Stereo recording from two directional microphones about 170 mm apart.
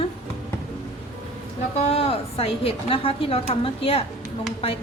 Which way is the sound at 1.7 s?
40° left (ahead or behind).